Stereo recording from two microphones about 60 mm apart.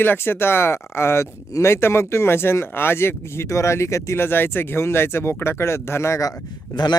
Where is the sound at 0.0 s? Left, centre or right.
Left.